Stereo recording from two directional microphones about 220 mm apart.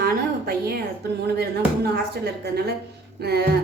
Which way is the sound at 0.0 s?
45° right (ahead or behind).